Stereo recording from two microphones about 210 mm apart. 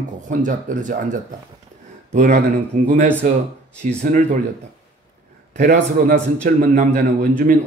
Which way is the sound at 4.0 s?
35° right (ahead or behind).